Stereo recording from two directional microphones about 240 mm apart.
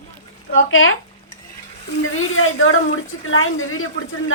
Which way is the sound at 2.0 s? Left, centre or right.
Left.